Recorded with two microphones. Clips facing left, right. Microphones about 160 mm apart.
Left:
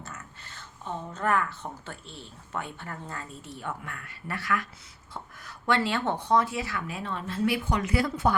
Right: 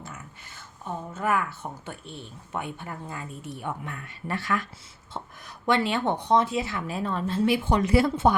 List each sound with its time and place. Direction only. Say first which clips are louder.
0.0 s speech: right 1 dB; 10° right (ahead or behind); by 7.3 s 40° right (ahead or behind)
7.3 s speech: right 3 dB; 25° right (ahead or behind)